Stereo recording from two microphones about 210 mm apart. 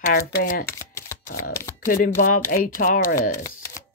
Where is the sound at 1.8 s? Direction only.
40° left (ahead or behind).